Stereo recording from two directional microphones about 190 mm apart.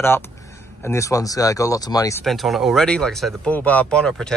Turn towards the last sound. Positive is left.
turn(degrees=5)  # may be behind; listen again after turning